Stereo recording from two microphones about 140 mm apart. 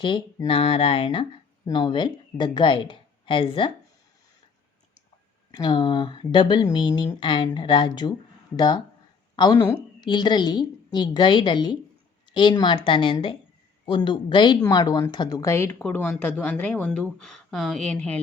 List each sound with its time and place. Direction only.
0.4 s speech: 40° left (ahead or behind)
5.5 s speech: 30° left (ahead or behind); by 18.2 s 10° left (ahead or behind)